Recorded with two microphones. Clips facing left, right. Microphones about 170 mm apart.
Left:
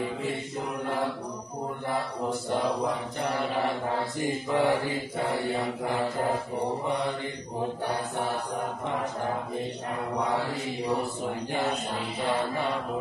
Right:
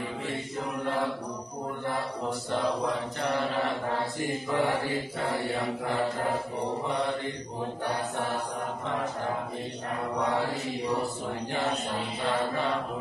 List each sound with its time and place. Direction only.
4.5 s mantra: 20° left (ahead or behind)